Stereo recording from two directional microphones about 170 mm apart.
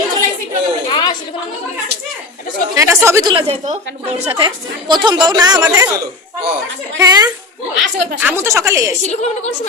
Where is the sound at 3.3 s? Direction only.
35° right (ahead or behind).